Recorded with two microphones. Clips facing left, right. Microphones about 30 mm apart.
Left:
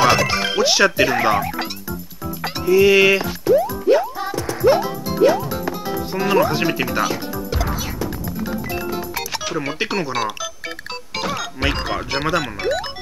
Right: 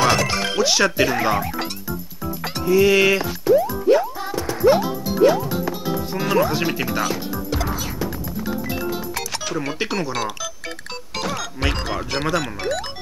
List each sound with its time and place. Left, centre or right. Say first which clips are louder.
0.0 s speech: left 3 dB; centre
2.4 s music: left 2 dB; centre
5.5 s speech: even; centre
8.4 s music: even; centre
11.1 s speech: left 2 dB; centre